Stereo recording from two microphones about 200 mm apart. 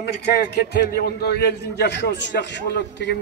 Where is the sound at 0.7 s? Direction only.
55° left (ahead or behind).